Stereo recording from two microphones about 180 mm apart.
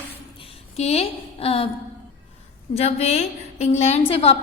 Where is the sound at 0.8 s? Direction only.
35° left (ahead or behind).